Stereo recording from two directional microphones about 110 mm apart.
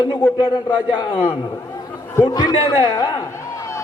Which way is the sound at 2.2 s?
40° left (ahead or behind).